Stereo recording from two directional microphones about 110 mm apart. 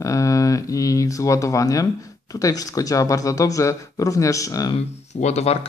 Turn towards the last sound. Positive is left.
turn(degrees=80)